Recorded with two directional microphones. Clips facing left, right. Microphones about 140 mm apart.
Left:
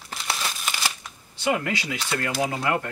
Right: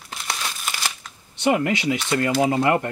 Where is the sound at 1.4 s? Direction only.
25° right (ahead or behind).